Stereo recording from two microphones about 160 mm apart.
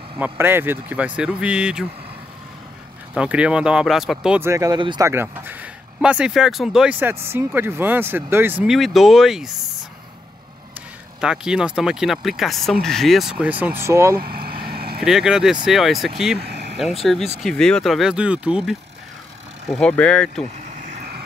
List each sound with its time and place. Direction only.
0.2 s speech: 15° right (ahead or behind)
3.2 s speech: 5° right (ahead or behind)
4.4 s speech: 20° right (ahead or behind)
5.0 s speech: 15° right (ahead or behind)
8.7 s speech: centre (ahead or behind)
11.1 s speech: 5° right (ahead or behind)
14.2 s speech: 70° right (ahead or behind)
14.7 s vehicle: 75° right (ahead or behind)
15.0 s speech: 5° right (ahead or behind)
19.7 s speech: 5° left (ahead or behind)